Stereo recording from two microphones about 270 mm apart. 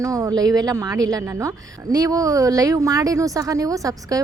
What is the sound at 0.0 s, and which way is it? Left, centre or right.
A woman's voice, centre.